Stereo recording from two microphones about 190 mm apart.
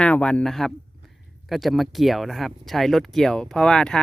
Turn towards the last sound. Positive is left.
turn(degrees=5)  # may be behind; listen again after turning